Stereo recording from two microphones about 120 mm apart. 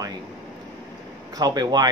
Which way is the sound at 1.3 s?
35° right (ahead or behind).